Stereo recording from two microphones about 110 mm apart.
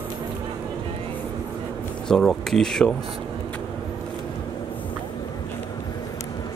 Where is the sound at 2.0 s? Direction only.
5° left (ahead or behind).